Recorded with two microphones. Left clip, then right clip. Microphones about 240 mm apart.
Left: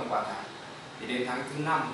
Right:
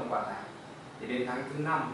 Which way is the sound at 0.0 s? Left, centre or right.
Centre.